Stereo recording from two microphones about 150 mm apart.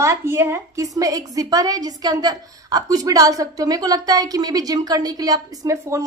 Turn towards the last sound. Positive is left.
turn(degrees=-20)  # may be behind; listen again after turning